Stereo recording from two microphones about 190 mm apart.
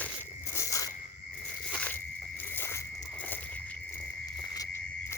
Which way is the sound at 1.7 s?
5° left (ahead or behind).